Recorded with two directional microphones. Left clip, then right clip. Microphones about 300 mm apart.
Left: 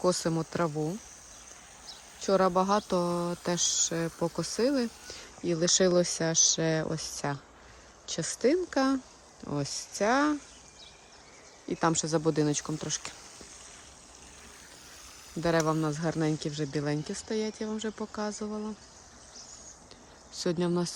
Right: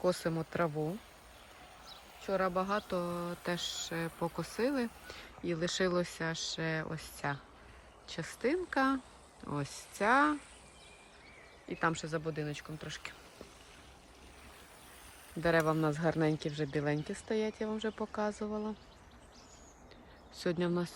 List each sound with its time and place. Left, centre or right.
0.0 s speech: centre
2.2 s speech: centre
11.7 s speech: centre
15.4 s speech: centre
20.3 s speech: centre